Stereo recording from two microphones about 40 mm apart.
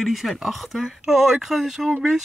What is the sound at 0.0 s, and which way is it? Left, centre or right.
Speech, centre.